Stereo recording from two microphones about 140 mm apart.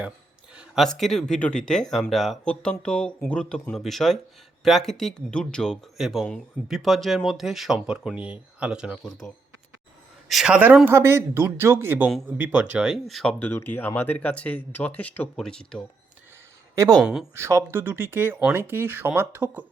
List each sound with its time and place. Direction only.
0.5 s a sound: 5° right (ahead or behind)
0.9 s speech: centre (ahead or behind)
10.2 s speech: 5° right (ahead or behind)
13.4 s speech: 15° left (ahead or behind)
16.7 s speech: 25° right (ahead or behind)
17.0 s speech: 5° right (ahead or behind)
17.3 s speech: 20° right (ahead or behind)